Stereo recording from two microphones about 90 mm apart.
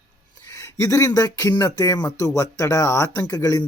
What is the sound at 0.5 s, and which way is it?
Speech, 35° left (ahead or behind).